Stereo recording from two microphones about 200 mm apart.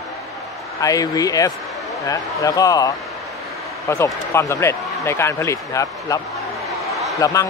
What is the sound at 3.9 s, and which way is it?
Speech, 15° left (ahead or behind).